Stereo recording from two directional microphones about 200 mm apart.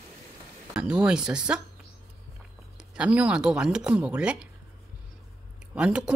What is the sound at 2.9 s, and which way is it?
Speech, 5° right (ahead or behind).